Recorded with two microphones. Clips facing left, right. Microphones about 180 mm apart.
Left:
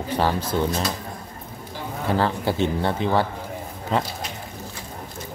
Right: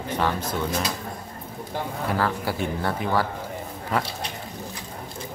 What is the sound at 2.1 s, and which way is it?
A man's voice, 25° left (ahead or behind).